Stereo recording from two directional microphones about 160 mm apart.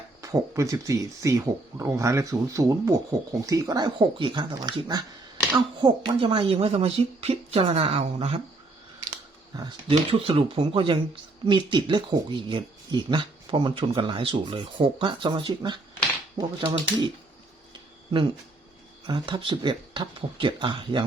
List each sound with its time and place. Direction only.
0.2 s speech: 20° right (ahead or behind); by 8.4 s 40° right (ahead or behind)
9.6 s speech: 30° right (ahead or behind)
19.0 s speech: 30° right (ahead or behind)